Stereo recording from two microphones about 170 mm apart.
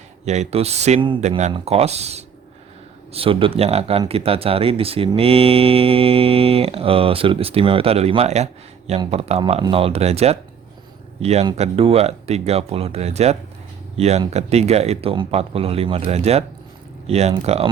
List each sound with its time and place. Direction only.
0.3 s speech: 40° right (ahead or behind)